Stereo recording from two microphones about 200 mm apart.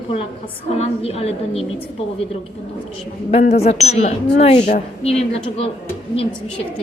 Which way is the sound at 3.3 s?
30° left (ahead or behind).